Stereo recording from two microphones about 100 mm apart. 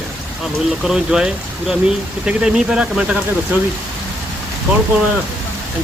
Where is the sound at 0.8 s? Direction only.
5° right (ahead or behind).